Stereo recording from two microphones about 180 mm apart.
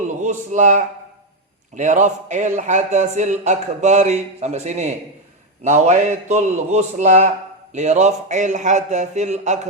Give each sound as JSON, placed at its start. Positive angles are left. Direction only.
{"t": 0.2, "sound": "a man's voice", "side_deg": -40}